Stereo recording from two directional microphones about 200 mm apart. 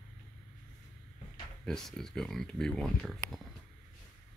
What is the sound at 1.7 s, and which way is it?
Speech, centre (ahead or behind).